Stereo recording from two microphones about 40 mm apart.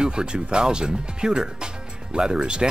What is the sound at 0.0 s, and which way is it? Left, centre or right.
Speech, right.